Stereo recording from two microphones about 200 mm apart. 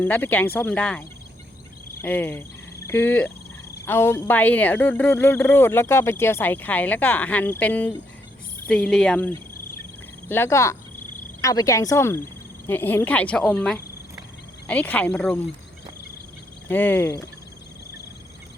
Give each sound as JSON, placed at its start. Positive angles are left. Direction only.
{"t": 0.0, "sound": "speech", "side_deg": 10}
{"t": 16.6, "sound": "speech", "side_deg": 10}